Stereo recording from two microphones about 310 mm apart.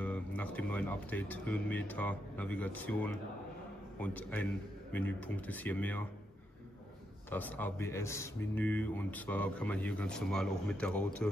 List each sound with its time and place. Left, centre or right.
0.0 s a man's voice: centre
7.2 s a man's voice: centre